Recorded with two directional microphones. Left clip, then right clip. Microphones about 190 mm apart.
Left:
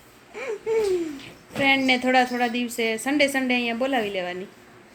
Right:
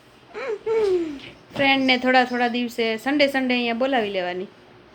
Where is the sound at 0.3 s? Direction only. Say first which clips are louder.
Right 2 dB; 15° right (ahead or behind).